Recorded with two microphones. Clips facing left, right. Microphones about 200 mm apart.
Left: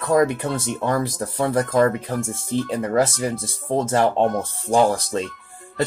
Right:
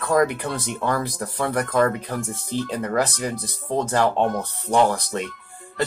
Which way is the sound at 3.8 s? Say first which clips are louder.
Left 2 dB; 25° left (ahead or behind).